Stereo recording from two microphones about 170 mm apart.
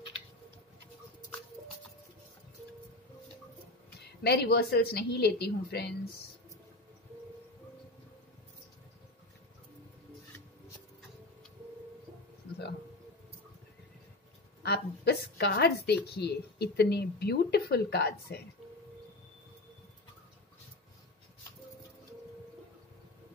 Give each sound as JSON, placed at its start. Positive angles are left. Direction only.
{"t": 4.2, "sound": "a woman's voice", "side_deg": 75}
{"t": 14.6, "sound": "a woman's voice", "side_deg": 75}